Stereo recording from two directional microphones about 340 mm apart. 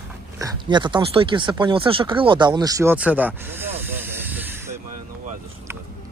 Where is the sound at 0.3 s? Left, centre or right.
Centre.